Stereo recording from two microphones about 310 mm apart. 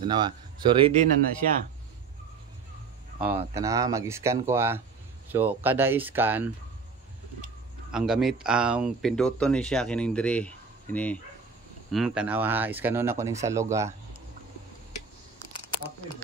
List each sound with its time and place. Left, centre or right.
0.0 s speech: centre
3.2 s speech: centre
7.9 s speech: centre